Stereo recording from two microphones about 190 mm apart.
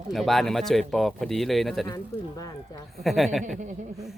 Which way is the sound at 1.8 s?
20° left (ahead or behind).